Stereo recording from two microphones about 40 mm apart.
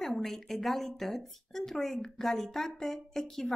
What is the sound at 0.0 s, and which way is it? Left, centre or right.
A woman's voice, centre.